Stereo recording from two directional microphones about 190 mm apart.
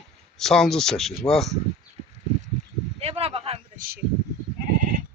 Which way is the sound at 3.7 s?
50° right (ahead or behind).